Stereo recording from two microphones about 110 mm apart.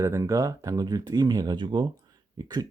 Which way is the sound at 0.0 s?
25° right (ahead or behind).